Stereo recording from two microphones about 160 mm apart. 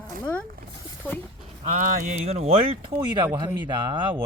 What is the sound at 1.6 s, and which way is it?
Speech, 40° right (ahead or behind).